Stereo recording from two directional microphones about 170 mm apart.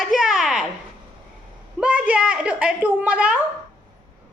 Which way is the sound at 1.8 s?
5° right (ahead or behind).